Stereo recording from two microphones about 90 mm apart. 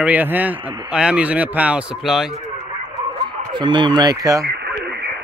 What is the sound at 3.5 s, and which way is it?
Speech, 60° right (ahead or behind).